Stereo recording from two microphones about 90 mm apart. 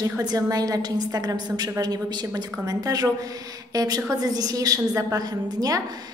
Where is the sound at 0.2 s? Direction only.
50° right (ahead or behind).